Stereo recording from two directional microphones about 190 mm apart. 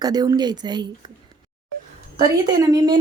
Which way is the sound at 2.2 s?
20° right (ahead or behind).